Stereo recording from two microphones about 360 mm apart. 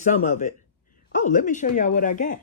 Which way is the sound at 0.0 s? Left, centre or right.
Left.